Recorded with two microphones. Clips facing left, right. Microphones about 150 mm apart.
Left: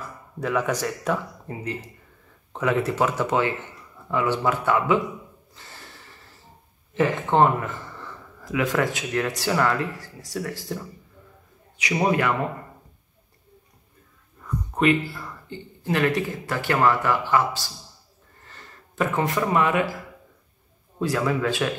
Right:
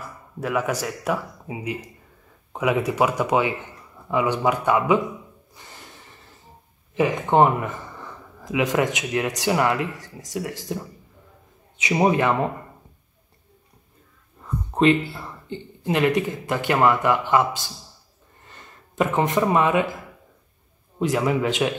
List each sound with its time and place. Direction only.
0.4 s speech: 5° right (ahead or behind)
5.5 s snort: 15° right (ahead or behind)
6.9 s speech: 15° right (ahead or behind)
11.8 s speech: 20° right (ahead or behind)
14.4 s speech: 25° right (ahead or behind)
21.0 s speech: 20° right (ahead or behind)